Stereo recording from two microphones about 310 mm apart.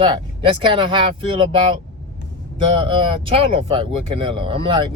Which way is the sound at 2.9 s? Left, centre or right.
Centre.